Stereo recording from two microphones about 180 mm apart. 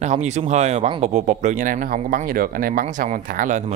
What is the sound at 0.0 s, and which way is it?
Speech, 40° right (ahead or behind).